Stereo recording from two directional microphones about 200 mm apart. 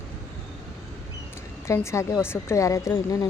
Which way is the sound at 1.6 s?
15° left (ahead or behind).